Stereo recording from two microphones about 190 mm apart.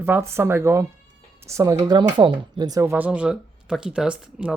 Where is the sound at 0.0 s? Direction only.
10° right (ahead or behind).